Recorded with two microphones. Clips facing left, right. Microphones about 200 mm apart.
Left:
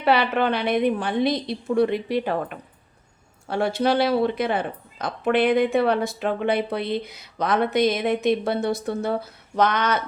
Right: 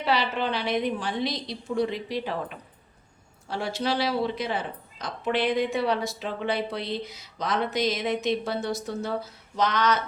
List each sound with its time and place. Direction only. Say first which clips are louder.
0.0 s speech: left 6 dB; 60° left (ahead or behind)